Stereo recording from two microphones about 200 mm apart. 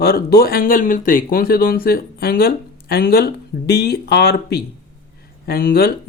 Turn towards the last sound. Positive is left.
turn(degrees=50)  # may be behind; listen again after turning